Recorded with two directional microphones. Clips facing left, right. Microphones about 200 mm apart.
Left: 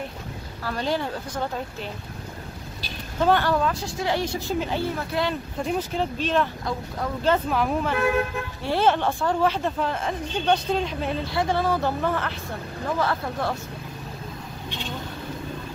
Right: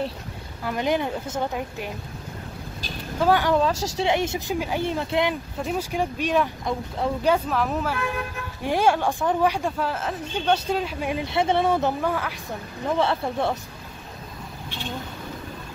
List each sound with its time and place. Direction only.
0.7 s speech: 15° right (ahead or behind)
3.2 s speech: 10° right (ahead or behind)
3.5 s a woman's voice: 20° right (ahead or behind)
4.6 s speech: 10° right (ahead or behind)
4.8 s a woman's voice: 20° right (ahead or behind)
5.6 s speech: 5° right (ahead or behind)
7.4 s speech: centre (ahead or behind)
8.6 s speech: 10° right (ahead or behind)
12.0 s speech: 10° right (ahead or behind)
12.8 s a woman's voice: 25° right (ahead or behind)